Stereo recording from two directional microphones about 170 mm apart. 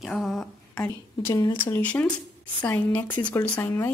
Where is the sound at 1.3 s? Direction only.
25° left (ahead or behind).